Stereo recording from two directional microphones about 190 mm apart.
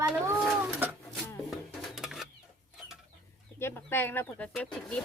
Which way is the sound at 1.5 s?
Centre (ahead or behind).